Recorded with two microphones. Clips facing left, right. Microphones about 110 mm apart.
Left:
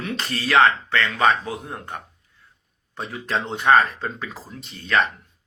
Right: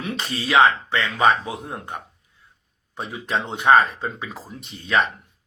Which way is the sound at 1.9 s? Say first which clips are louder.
Right 1 dB; 5° right (ahead or behind).